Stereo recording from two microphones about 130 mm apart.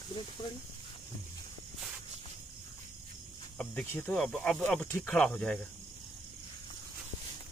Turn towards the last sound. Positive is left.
turn(degrees=10)  # may be behind; listen again after turning